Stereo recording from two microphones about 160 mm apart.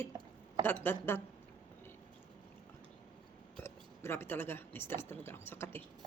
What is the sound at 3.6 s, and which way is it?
Speech, 15° left (ahead or behind).